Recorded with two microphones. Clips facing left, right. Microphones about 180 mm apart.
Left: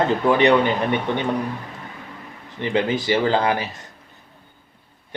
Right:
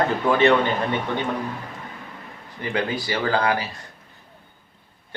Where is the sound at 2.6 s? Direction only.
20° left (ahead or behind).